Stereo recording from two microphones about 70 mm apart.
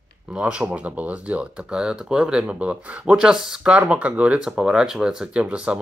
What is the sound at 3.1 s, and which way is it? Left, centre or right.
Speech, centre.